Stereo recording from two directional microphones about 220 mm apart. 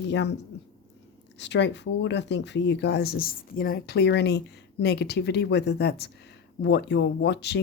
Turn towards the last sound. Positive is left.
turn(degrees=50)  # may be behind; listen again after turning